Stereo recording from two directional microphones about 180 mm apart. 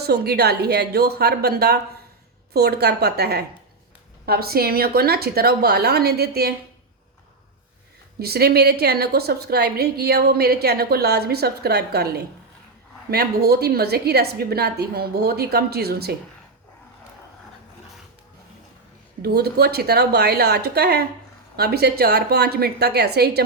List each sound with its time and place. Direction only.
0.0 s a woman's voice: 65° right (ahead or behind)
8.2 s a woman's voice: 60° right (ahead or behind)
19.2 s a woman's voice: 60° right (ahead or behind)